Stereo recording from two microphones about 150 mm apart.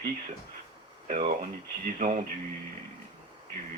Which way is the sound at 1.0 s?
55° right (ahead or behind).